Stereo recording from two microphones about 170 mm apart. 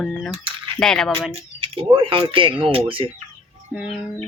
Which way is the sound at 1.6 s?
30° right (ahead or behind).